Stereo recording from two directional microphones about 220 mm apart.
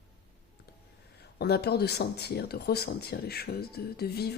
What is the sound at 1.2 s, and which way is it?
Speech, 45° left (ahead or behind).